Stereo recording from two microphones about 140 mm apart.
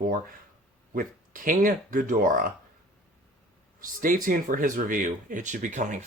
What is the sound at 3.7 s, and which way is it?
Speech, 80° right.